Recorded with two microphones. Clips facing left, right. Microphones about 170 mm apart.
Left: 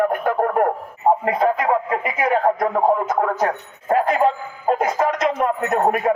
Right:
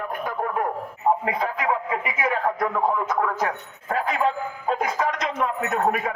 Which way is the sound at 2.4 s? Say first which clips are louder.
Left 5 dB; 40° left (ahead or behind).